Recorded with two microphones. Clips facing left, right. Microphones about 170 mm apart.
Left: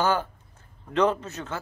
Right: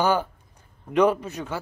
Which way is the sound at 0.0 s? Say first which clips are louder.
Right 2 dB; 15° right (ahead or behind).